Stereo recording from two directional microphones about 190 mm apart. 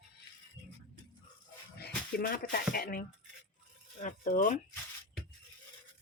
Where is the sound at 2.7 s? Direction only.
50° left (ahead or behind).